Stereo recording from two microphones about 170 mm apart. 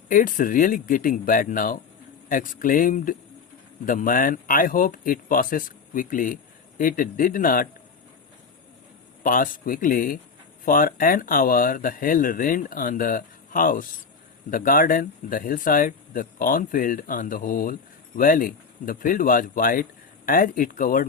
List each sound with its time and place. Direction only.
0.1 s speech: 50° left (ahead or behind)
9.2 s speech: 55° left (ahead or behind)